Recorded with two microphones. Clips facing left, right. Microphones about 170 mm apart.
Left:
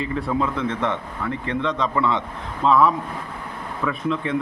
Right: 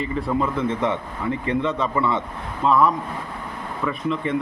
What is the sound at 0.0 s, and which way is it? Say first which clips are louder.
A man's voice: even; centre (ahead or behind).